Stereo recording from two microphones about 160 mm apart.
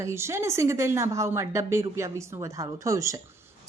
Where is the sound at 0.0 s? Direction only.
15° right (ahead or behind).